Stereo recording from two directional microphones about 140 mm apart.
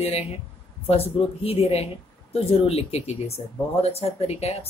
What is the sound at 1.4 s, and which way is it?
Speech, 45° left (ahead or behind).